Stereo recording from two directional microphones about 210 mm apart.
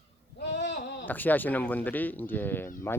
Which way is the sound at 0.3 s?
55° left (ahead or behind).